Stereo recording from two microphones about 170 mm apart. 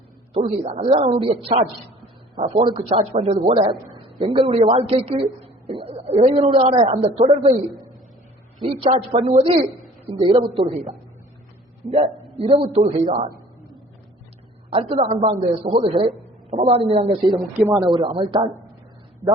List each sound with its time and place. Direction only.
0.4 s a man's voice: 45° right (ahead or behind)
8.6 s a man's voice: 30° right (ahead or behind)
14.7 s a man's voice: 35° right (ahead or behind)
17.5 s speech: 10° right (ahead or behind)
17.9 s speech: 30° right (ahead or behind)